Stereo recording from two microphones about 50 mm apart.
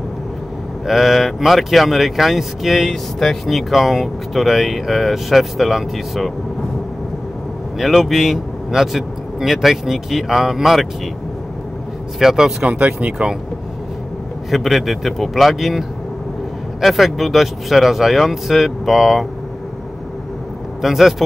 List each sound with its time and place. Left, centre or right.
0.8 s speech: centre
7.8 s speech: centre
12.2 s speech: centre
12.7 s speech: right
14.5 s speech: centre
16.8 s speech: centre
20.8 s speech: centre